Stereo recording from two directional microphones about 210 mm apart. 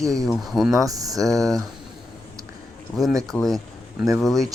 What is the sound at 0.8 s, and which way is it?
Speech, 15° right (ahead or behind).